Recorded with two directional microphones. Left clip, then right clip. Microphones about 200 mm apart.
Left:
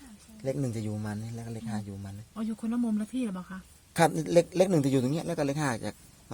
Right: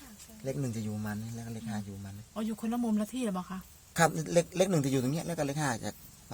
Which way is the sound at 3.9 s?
30° left (ahead or behind).